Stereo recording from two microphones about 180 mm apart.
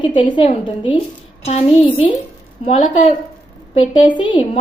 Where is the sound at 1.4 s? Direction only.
35° left (ahead or behind).